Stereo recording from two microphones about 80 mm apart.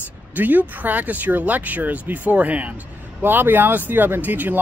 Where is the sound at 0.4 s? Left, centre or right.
Right.